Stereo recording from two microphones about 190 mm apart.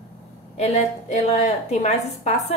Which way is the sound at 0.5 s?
35° left (ahead or behind).